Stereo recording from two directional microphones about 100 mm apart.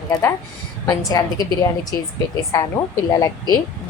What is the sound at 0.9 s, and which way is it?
Speech, 40° left (ahead or behind).